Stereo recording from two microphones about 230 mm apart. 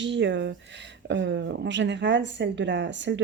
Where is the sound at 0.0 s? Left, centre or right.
Right.